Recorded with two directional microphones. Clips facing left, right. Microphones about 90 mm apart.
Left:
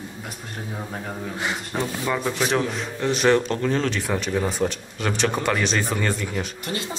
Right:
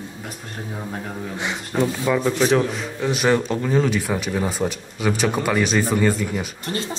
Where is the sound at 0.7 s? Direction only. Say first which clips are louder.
Right 2 dB; centre (ahead or behind).